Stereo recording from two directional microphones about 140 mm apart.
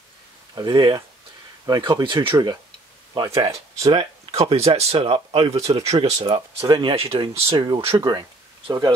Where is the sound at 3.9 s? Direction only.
40° right (ahead or behind).